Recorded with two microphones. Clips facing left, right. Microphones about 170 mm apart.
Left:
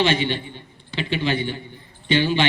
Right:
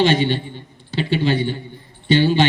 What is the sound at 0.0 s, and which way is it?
A man's voice, 40° right (ahead or behind).